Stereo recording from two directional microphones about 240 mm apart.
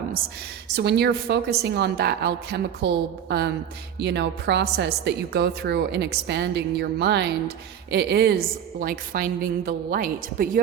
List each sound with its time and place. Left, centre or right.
0.8 s a woman's voice: right